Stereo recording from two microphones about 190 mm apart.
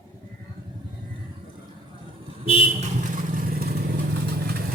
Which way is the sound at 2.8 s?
40° right (ahead or behind).